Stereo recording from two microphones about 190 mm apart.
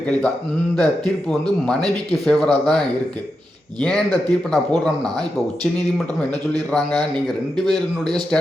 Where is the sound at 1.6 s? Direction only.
5° left (ahead or behind).